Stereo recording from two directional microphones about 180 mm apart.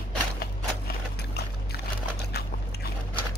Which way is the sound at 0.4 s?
60° left (ahead or behind).